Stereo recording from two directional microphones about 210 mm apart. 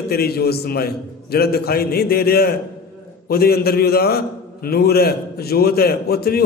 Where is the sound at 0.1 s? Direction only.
50° left (ahead or behind).